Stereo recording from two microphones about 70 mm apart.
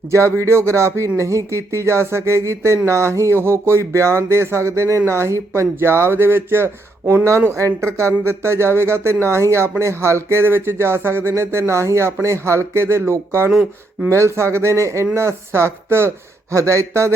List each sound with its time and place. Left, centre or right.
0.1 s speech: right
13.5 s speech: centre
14.1 s speech: right